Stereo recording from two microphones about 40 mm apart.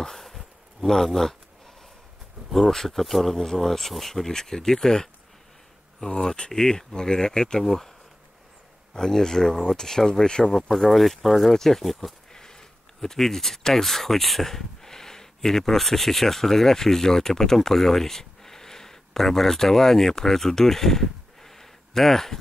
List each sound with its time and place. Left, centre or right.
0.0 s a sound: centre
1.0 s speech: centre
2.7 s speech: centre
6.2 s speech: centre
8.9 s speech: centre
10.5 s speech: centre
12.3 s speech: centre